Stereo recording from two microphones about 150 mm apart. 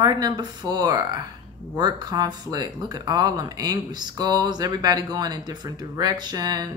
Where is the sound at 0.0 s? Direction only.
25° right (ahead or behind).